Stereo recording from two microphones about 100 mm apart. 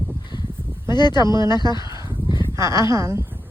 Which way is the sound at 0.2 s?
45° left (ahead or behind).